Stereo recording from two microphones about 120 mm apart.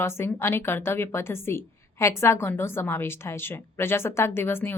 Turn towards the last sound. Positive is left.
turn(degrees=20)  # may be behind; listen again after turning